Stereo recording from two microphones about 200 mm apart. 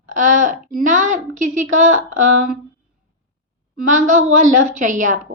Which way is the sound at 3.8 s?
40° right (ahead or behind).